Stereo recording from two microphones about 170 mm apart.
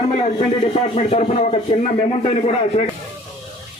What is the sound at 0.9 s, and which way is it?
A man's voice, 40° left (ahead or behind).